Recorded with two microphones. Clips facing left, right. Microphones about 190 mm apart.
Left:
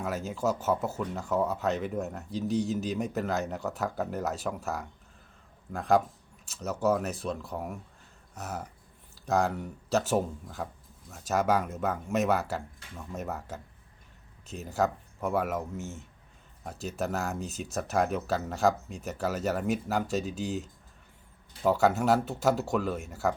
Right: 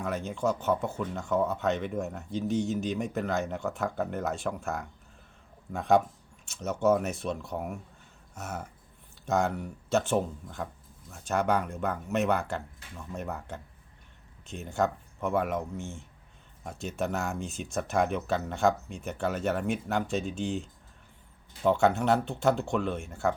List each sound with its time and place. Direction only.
0.0 s speech: 5° left (ahead or behind)